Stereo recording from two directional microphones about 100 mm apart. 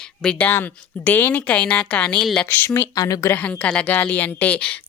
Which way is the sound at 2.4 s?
20° left (ahead or behind).